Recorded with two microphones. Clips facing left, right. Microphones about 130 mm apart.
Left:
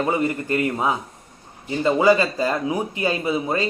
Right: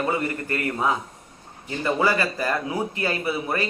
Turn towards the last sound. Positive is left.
turn(degrees=20)  # may be behind; listen again after turning